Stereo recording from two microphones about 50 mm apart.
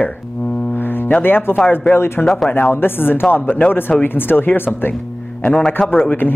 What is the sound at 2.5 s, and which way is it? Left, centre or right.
Speech, left.